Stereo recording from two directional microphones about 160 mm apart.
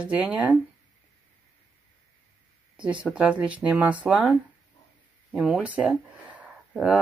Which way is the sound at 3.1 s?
10° right (ahead or behind).